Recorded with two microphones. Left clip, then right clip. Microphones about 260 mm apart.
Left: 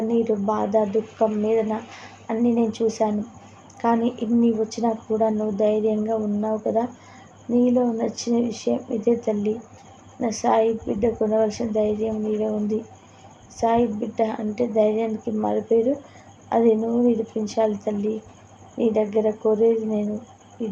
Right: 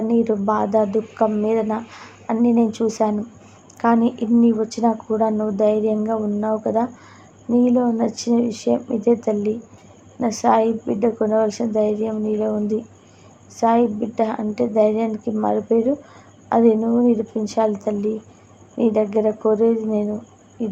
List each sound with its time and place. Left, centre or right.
0.1 s speech: right
18.8 s speech: right